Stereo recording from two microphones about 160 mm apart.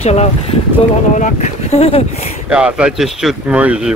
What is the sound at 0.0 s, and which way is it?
Speech, 40° left (ahead or behind).